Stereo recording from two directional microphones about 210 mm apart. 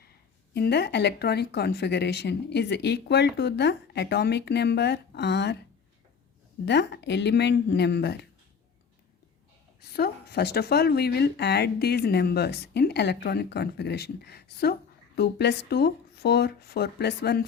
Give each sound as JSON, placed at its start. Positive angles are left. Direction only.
{"t": 0.5, "sound": "speech", "side_deg": 50}
{"t": 6.7, "sound": "speech", "side_deg": 55}
{"t": 9.9, "sound": "speech", "side_deg": 50}